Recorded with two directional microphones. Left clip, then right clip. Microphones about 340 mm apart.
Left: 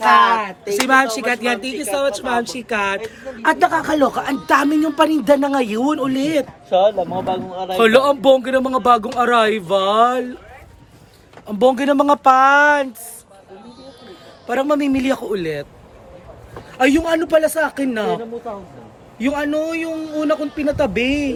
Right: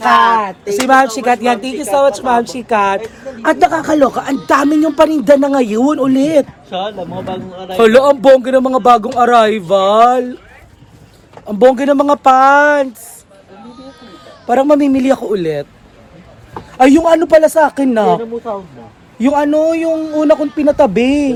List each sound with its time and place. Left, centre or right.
0.7 s a woman's voice: centre
6.7 s speech: left
7.8 s a woman's voice: centre
11.4 s speech: centre
14.4 s a woman's voice: centre
16.7 s a woman's voice: centre
19.2 s a woman's voice: centre